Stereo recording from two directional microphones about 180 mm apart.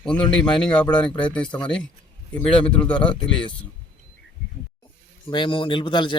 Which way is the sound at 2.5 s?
30° left (ahead or behind).